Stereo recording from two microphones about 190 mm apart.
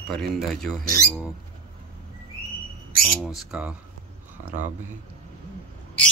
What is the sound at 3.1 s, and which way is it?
Speech, 5° right (ahead or behind).